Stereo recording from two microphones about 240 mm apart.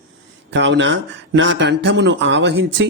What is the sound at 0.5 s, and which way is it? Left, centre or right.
Speech, right.